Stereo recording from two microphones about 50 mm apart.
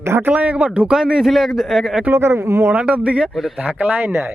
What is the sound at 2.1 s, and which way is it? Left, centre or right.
Speech, right.